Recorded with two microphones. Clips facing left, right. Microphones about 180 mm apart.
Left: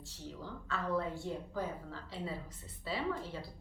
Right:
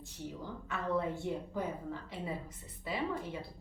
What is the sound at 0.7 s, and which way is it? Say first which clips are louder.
A woman's voice: right 1 dB; 20° right (ahead or behind).